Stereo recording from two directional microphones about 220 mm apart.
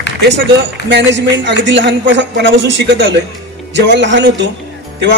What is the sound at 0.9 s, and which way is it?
Speech, 55° right (ahead or behind).